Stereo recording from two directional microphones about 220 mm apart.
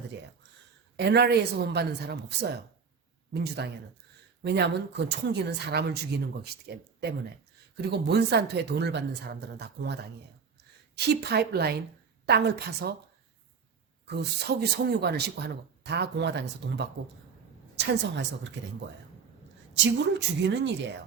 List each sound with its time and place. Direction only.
0.9 s speech: 50° right (ahead or behind)
7.8 s speech: 50° right (ahead or behind)
14.0 s a woman's voice: 50° right (ahead or behind)
19.7 s speech: 55° right (ahead or behind)